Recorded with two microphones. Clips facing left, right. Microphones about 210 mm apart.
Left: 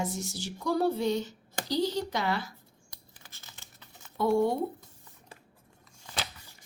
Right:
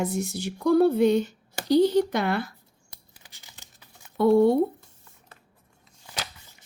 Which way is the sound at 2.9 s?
15° right (ahead or behind).